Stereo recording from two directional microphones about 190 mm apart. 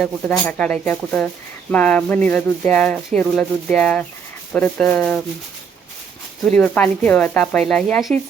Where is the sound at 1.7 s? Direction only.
5° left (ahead or behind).